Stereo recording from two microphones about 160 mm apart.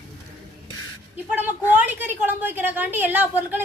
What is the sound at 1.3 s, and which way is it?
A woman's voice, 10° right (ahead or behind).